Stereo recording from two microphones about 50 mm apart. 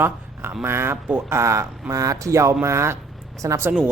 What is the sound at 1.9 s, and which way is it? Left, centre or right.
Speech, right.